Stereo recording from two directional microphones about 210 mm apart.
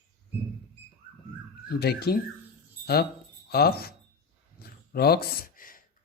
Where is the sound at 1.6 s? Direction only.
50° left (ahead or behind).